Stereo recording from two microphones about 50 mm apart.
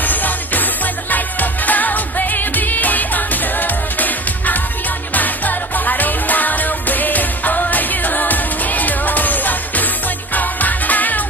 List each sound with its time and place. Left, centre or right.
0.0 s music: left